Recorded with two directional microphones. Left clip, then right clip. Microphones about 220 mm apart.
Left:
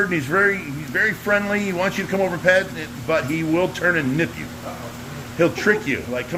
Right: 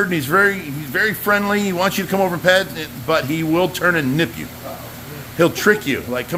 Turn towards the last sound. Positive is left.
turn(degrees=-35)  # may be behind; listen again after turning